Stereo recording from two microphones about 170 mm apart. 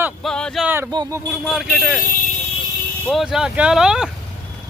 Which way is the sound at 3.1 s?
Centre (ahead or behind).